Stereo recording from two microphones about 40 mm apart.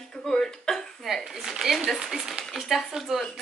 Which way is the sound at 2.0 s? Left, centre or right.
Centre.